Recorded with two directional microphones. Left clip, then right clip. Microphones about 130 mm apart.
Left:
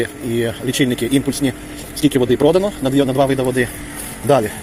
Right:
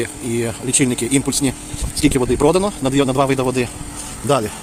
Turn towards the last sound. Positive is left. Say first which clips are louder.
# left 3 dB
turn(degrees=-30)  # may be behind; listen again after turning